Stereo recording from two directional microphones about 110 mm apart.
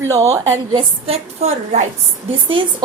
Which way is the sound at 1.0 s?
80° right.